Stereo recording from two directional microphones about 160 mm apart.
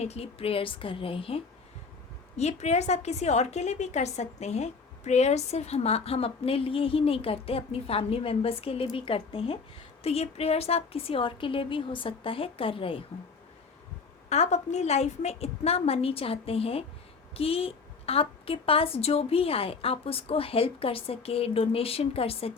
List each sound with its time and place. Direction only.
0.0 s a woman's voice: 40° left (ahead or behind)
14.3 s a woman's voice: 45° left (ahead or behind)